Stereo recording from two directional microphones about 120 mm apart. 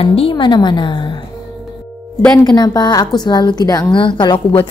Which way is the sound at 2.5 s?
35° left (ahead or behind).